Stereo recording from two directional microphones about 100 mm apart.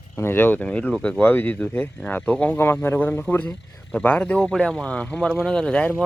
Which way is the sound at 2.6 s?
25° left (ahead or behind).